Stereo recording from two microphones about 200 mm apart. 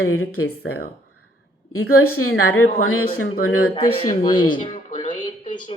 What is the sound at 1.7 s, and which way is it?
Speech, 90° left.